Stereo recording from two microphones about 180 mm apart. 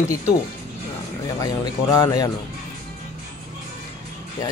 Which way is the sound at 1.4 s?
20° left (ahead or behind).